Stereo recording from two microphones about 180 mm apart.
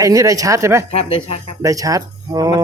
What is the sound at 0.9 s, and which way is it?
Speech, 35° left (ahead or behind).